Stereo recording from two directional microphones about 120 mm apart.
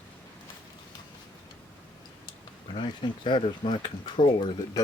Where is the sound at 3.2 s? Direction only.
45° left (ahead or behind).